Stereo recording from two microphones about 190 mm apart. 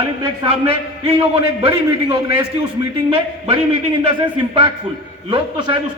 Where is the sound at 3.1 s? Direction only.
30° right (ahead or behind).